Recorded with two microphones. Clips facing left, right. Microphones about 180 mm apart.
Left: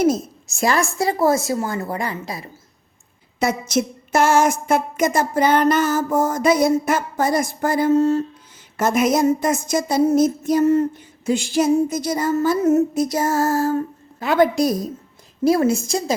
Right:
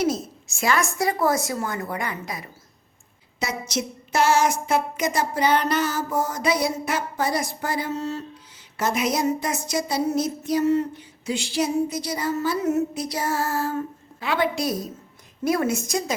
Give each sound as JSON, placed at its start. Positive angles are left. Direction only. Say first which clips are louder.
{"t": 0.0, "sound": "a woman's voice", "louder": "left 6 dB", "side_deg": 45}
{"t": 3.4, "sound": "a sound", "louder": "left 7 dB", "side_deg": 50}
{"t": 15.4, "sound": "a woman's voice", "louder": "left 6 dB", "side_deg": 30}